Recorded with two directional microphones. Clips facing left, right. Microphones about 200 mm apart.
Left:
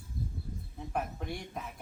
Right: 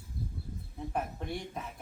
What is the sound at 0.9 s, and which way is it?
Speech, centre (ahead or behind).